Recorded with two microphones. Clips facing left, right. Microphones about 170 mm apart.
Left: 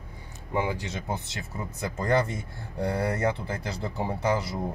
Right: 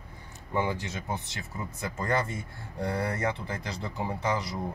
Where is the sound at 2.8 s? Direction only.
25° left (ahead or behind).